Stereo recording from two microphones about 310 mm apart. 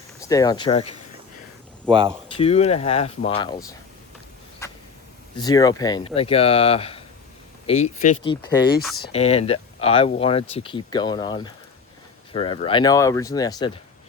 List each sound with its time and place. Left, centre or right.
0.2 s speech: centre
1.9 s speech: centre
2.3 s speech: centre
4.6 s a sound: centre
5.4 s speech: centre